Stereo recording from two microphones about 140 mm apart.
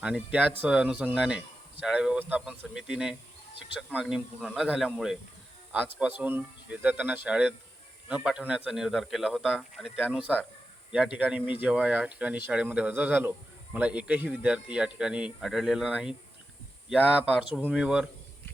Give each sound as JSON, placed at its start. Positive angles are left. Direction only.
{"t": 0.0, "sound": "speech", "side_deg": -10}